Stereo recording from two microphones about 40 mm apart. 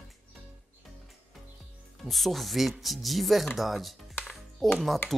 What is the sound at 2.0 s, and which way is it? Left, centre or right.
Speech, centre.